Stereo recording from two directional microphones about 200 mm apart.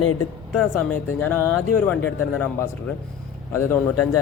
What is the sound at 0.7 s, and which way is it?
Speech, 10° left (ahead or behind).